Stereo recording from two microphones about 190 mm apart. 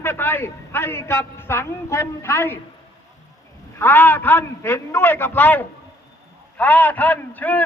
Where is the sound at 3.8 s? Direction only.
10° left (ahead or behind).